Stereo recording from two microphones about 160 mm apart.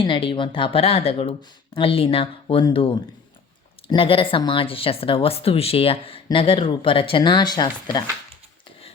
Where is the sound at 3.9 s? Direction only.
35° left (ahead or behind).